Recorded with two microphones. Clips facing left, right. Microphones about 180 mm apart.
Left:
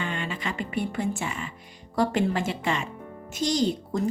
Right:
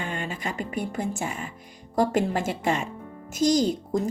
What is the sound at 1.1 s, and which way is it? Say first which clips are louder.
A woman's voice: right 1 dB; 45° right (ahead or behind).